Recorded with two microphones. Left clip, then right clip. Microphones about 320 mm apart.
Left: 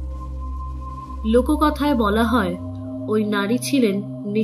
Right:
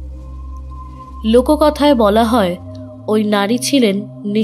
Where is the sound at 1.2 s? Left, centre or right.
Right.